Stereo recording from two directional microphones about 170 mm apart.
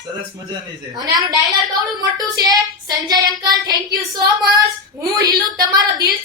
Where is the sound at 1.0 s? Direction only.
25° right (ahead or behind).